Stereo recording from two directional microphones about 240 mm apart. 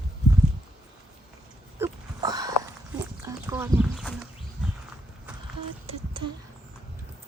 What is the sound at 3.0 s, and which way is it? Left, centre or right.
Horse, centre.